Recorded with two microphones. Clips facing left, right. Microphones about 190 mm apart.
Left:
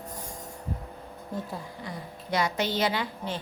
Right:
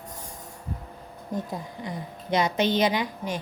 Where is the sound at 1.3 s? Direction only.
20° right (ahead or behind).